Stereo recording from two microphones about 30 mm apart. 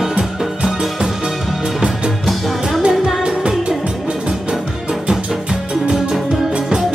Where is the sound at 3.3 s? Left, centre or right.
Right.